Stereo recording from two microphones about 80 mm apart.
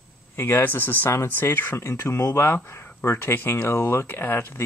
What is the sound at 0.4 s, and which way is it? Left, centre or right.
Speech, left.